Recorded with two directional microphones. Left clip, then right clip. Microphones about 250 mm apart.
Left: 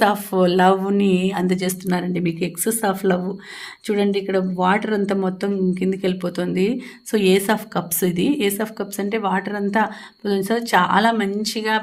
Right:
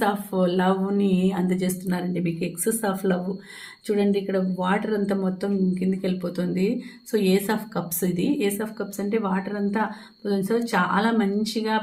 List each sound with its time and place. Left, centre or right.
0.0 s speech: left